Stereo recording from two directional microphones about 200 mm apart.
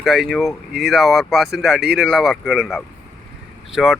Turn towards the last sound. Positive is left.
turn(degrees=-5)  # may be behind; listen again after turning